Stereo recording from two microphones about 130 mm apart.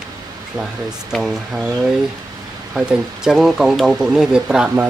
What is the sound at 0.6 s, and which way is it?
Speech, 5° right (ahead or behind).